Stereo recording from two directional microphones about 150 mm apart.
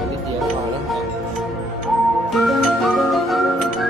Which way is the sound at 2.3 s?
Centre (ahead or behind).